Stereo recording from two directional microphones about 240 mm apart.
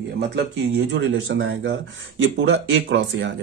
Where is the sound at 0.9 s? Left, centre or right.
Right.